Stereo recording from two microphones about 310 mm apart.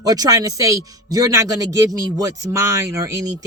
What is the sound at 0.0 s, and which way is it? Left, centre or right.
Speech, centre.